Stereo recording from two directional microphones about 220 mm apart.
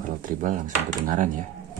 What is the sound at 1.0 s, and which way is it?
Speech, 35° right (ahead or behind).